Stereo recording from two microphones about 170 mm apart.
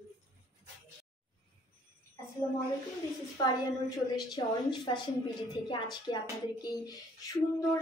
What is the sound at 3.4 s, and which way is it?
A woman's voice, 20° left (ahead or behind).